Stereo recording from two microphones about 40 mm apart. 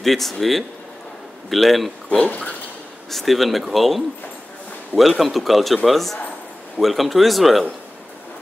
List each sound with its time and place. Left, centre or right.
0.0 s speech: centre
2.0 s speech: left
3.1 s speech: centre